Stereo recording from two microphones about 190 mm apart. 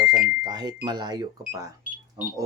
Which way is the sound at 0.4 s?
20° right (ahead or behind).